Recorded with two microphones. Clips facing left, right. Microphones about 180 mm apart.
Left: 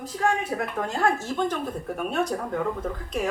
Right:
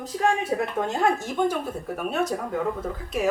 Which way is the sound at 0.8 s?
20° right (ahead or behind).